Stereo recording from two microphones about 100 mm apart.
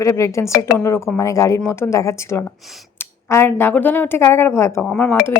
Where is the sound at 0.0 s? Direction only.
30° left (ahead or behind).